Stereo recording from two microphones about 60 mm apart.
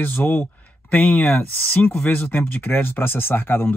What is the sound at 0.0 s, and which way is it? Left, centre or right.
Speech, left.